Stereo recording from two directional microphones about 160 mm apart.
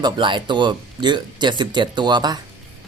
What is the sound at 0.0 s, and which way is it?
Speech, 30° right (ahead or behind).